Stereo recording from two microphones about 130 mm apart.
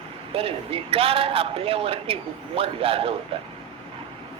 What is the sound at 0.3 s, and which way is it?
Speech, 45° right (ahead or behind).